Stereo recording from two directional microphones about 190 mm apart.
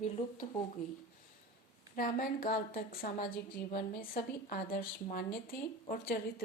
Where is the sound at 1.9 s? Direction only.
50° left (ahead or behind).